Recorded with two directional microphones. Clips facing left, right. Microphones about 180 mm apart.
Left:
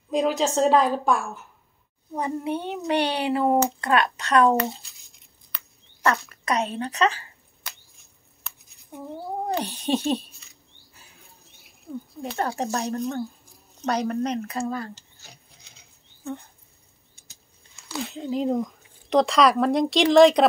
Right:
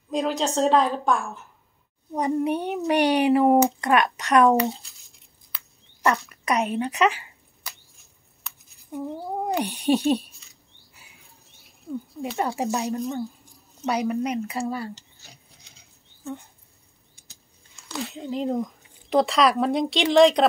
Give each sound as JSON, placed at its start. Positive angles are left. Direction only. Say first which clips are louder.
{"t": 0.1, "sound": "speech", "louder": "left 2 dB", "side_deg": 0}
{"t": 2.1, "sound": "a child's voice", "louder": "right 4 dB", "side_deg": -20}
{"t": 6.0, "sound": "a child's voice", "louder": "right 1 dB", "side_deg": -15}
{"t": 7.6, "sound": "scissors", "louder": "even", "side_deg": -5}
{"t": 9.5, "sound": "a child's voice", "louder": "right 3 dB", "side_deg": -15}
{"t": 12.2, "sound": "a child's voice", "louder": "right 1 dB", "side_deg": -10}
{"t": 17.8, "sound": "speech", "louder": "left 1 dB", "side_deg": 0}